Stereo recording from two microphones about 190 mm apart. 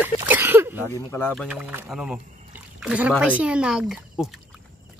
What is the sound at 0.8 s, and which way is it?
Speech, 10° left (ahead or behind).